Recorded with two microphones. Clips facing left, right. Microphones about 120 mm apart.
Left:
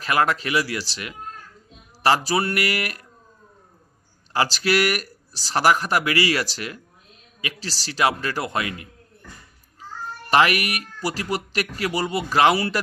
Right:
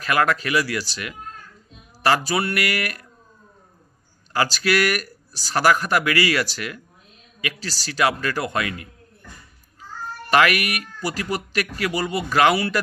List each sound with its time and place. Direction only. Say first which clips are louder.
0.0 s speech: right 1 dB; 25° left (ahead or behind)
4.3 s speech: even; 30° left (ahead or behind)
10.2 s speech: even; 25° left (ahead or behind)